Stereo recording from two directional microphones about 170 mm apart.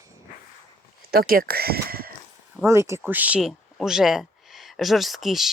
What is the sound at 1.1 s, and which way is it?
Speech, 65° right (ahead or behind).